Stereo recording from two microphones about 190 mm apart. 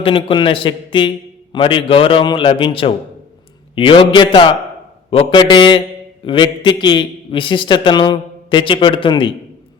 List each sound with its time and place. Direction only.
0.0 s a man's voice: 30° left (ahead or behind)